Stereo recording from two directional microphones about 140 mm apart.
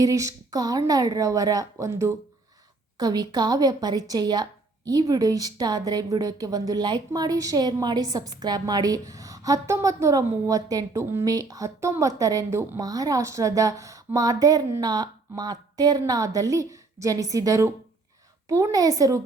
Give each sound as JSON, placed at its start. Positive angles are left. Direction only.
{"t": 0.0, "sound": "a woman's voice", "side_deg": -25}